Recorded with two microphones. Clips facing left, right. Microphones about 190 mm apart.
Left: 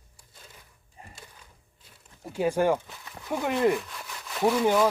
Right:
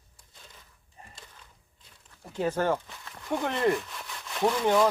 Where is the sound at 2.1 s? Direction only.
10° left (ahead or behind).